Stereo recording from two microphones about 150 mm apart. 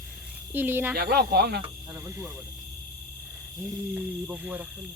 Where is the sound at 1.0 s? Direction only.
90° right.